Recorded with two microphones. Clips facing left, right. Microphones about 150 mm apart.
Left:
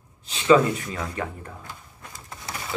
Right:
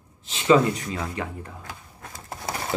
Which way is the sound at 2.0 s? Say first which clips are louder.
Right 4 dB; 50° right (ahead or behind).